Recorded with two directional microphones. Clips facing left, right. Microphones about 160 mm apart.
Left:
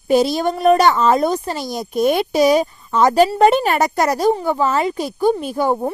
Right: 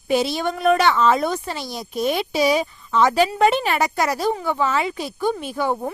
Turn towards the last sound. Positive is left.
turn(degrees=40)  # may be behind; listen again after turning